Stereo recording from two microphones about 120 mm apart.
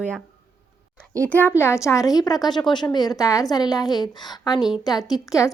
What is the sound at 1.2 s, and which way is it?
A woman's voice, 15° left (ahead or behind).